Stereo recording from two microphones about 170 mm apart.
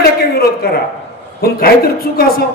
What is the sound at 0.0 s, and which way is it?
A man's voice, 65° left (ahead or behind).